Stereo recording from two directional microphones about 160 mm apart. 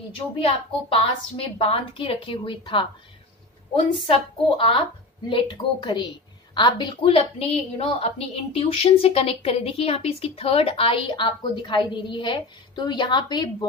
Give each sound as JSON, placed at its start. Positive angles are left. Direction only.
{"t": 0.4, "sound": "a woman's voice", "side_deg": 35}